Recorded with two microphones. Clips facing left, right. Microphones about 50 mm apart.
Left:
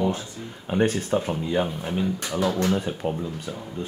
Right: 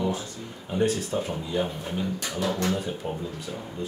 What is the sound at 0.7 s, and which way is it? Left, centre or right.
Speech, left.